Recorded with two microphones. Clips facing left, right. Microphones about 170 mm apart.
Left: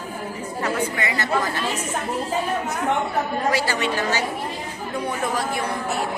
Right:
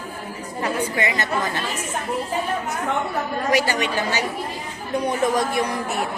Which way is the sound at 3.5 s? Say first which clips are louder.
Right 2 dB; 15° right (ahead or behind).